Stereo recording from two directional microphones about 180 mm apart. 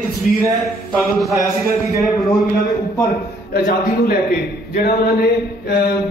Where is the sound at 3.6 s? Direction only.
60° left (ahead or behind).